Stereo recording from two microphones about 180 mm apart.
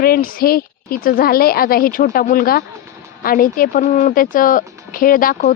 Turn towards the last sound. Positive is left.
turn(degrees=50)  # may be behind; listen again after turning